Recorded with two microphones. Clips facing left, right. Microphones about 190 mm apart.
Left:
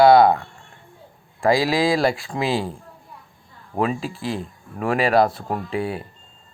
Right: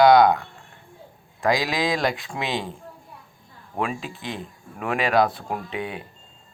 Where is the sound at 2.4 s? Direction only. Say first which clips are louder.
Left 5 dB; 35° left (ahead or behind).